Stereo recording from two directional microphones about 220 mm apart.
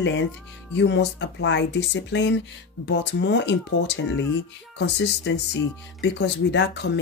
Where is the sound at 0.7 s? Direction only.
55° left (ahead or behind).